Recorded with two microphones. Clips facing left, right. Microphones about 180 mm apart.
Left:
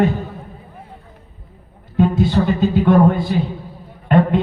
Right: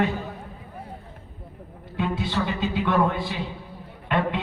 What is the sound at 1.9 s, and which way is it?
A man's voice, 45° left (ahead or behind).